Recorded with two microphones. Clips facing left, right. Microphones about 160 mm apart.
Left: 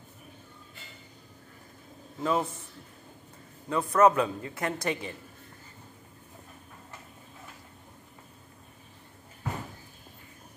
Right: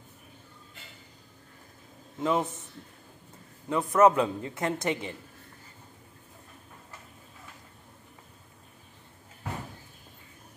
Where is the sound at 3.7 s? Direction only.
20° right (ahead or behind).